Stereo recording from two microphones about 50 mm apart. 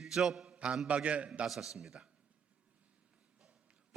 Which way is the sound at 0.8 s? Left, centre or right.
Right.